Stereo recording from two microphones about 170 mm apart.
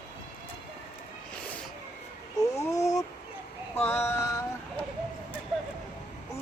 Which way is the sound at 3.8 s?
15° left (ahead or behind).